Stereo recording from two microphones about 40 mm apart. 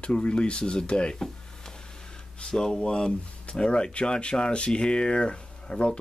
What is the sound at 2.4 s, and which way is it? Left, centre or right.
Speech, centre.